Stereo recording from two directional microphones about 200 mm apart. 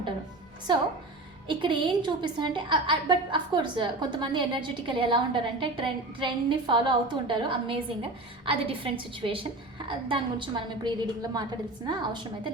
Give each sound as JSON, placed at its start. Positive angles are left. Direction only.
{"t": 1.5, "sound": "a woman's voice", "side_deg": -25}